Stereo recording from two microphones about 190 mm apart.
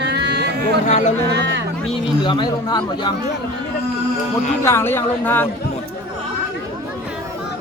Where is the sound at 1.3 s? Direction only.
65° right (ahead or behind).